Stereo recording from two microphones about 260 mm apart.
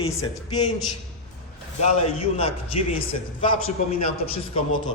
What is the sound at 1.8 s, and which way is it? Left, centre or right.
A man's voice, left.